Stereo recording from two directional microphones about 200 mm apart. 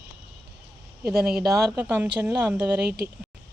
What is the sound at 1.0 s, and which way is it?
Speech, 5° right (ahead or behind).